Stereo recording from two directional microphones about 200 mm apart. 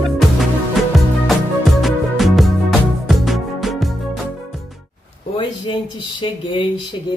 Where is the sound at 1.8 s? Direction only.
Centre (ahead or behind).